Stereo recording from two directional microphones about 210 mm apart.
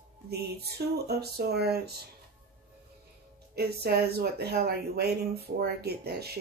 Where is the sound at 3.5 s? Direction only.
50° right (ahead or behind).